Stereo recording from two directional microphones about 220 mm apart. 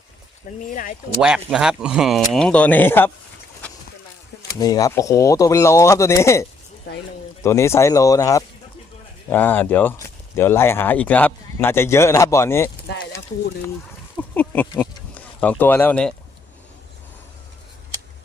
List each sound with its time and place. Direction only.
0.7 s speech: 35° left (ahead or behind)
1.2 s speech: 5° right (ahead or behind)
4.4 s speech: 15° left (ahead or behind)
6.9 s speech: 50° left (ahead or behind)
7.4 s speech: 10° left (ahead or behind)
14.2 s speech: 10° left (ahead or behind)